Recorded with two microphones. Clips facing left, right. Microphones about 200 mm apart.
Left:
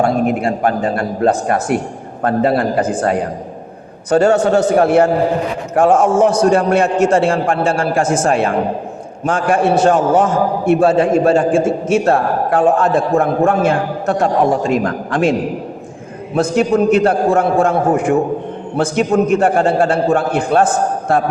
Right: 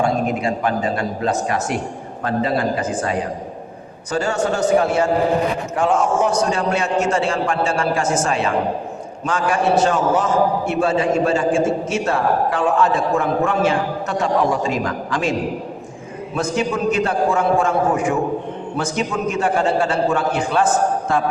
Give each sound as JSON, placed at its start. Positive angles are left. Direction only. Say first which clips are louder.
{"t": 0.3, "sound": "a man's voice", "louder": "left 4 dB", "side_deg": 55}
{"t": 4.1, "sound": "a man's voice", "louder": "left 9 dB", "side_deg": 55}